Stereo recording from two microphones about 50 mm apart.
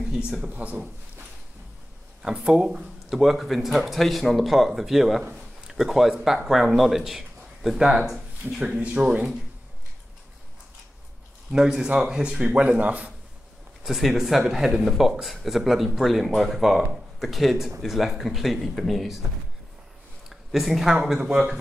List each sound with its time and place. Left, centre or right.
0.5 s speech: right
2.2 s speech: centre
8.7 s speech: right
11.5 s speech: centre
12.4 s speech: right
13.8 s speech: centre
20.2 s speech: centre